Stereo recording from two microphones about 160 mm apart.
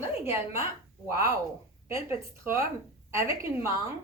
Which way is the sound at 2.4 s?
15° right (ahead or behind).